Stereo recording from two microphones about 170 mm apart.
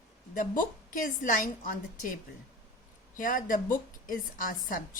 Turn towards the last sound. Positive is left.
turn(degrees=55)  # may be behind; listen again after turning